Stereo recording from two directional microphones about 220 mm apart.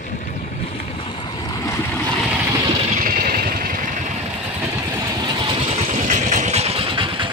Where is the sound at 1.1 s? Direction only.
20° left (ahead or behind).